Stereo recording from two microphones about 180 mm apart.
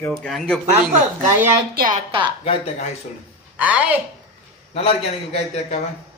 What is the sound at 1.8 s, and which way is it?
Speech, 50° right (ahead or behind).